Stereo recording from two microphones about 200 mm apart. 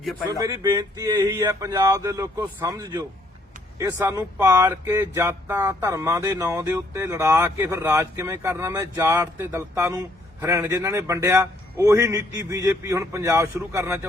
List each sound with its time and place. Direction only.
0.3 s speech: 15° right (ahead or behind)